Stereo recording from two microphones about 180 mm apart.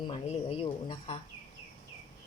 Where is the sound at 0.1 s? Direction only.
30° left (ahead or behind).